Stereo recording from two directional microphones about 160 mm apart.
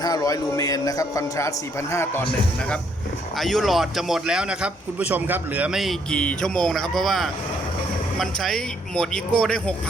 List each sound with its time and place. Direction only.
0.0 s a man's voice: 25° left (ahead or behind); by 9.7 s 5° left (ahead or behind)